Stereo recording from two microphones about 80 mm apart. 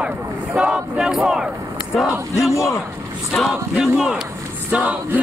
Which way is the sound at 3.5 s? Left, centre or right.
Centre.